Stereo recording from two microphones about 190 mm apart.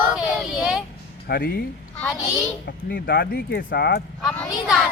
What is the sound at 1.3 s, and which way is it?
Speech, 55° left (ahead or behind).